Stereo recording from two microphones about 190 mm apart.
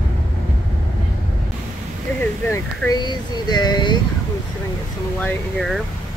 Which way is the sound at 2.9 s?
20° left (ahead or behind).